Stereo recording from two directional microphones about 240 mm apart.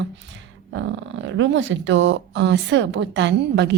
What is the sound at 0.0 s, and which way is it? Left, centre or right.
Speech, right.